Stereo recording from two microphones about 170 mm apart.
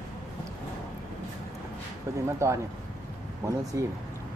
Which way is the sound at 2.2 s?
15° right (ahead or behind).